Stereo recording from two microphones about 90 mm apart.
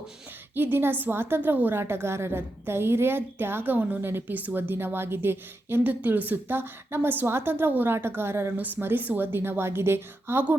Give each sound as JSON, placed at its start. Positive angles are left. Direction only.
{"t": 0.5, "sound": "a woman's voice", "side_deg": -25}